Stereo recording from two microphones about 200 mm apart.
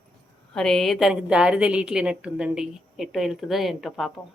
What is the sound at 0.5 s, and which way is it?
A woman's voice, 5° left (ahead or behind).